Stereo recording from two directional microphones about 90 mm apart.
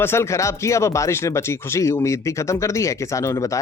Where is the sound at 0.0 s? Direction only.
30° left (ahead or behind).